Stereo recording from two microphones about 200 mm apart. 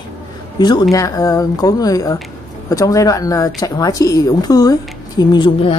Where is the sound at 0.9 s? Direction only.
15° left (ahead or behind).